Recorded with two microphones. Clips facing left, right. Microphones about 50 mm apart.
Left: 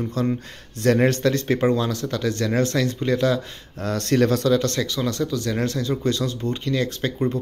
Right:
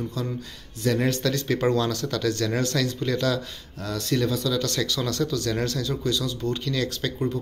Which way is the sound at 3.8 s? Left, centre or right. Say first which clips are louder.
Left 6 dB; left.